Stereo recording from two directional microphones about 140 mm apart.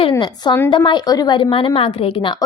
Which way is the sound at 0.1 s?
30° left (ahead or behind).